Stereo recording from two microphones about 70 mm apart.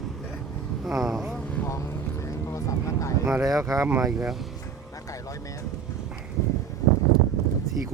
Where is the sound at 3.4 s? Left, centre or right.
Right.